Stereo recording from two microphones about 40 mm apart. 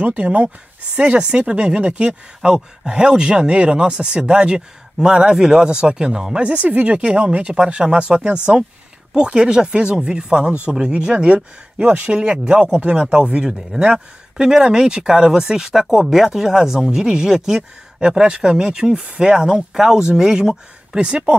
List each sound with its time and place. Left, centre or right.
0.0 s speech: right; by 6.4 s centre
6.4 s speech: right
11.3 s speech: right